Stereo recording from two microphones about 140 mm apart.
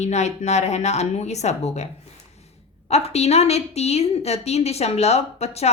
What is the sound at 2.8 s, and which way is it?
A woman's voice, 50° left (ahead or behind).